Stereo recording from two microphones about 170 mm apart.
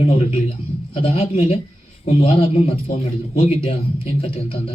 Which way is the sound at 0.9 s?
35° left (ahead or behind).